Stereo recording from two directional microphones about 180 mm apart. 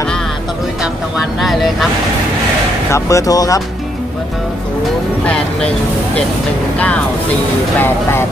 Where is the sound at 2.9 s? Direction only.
20° left (ahead or behind).